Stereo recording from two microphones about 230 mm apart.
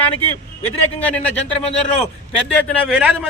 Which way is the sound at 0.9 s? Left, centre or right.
Centre.